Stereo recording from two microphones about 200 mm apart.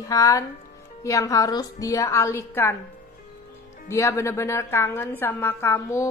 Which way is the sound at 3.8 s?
15° left (ahead or behind).